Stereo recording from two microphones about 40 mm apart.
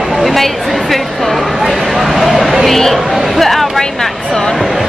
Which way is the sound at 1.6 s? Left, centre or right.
Centre.